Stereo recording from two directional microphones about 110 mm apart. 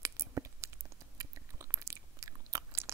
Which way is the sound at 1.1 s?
30° right (ahead or behind).